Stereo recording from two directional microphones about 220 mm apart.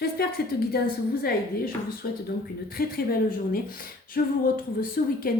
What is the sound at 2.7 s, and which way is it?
A woman's voice, 45° left (ahead or behind).